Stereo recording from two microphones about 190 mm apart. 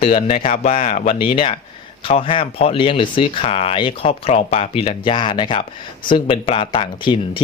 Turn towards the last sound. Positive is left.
turn(degrees=25)  # may be behind; listen again after turning